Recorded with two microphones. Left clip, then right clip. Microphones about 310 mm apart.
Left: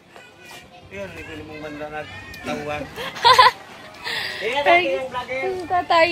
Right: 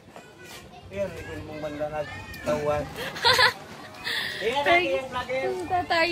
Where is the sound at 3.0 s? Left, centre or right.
Centre.